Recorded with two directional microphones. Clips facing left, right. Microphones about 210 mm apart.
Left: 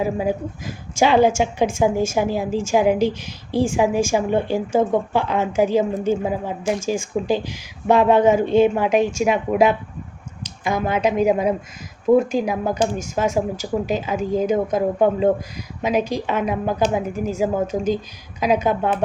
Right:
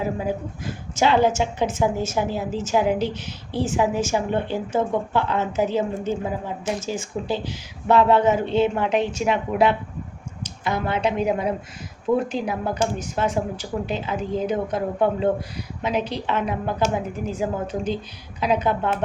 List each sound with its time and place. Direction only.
0.0 s a woman's voice: 10° left (ahead or behind)
17.7 s speech: 45° left (ahead or behind)
18.3 s a woman's voice: 10° left (ahead or behind)